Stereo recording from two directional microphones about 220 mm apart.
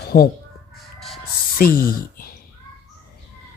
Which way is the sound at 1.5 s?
40° left (ahead or behind).